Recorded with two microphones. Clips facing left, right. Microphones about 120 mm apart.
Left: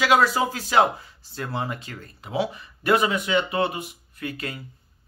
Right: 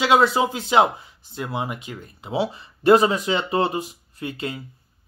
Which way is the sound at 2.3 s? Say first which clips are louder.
Right 2 dB; 30° right (ahead or behind).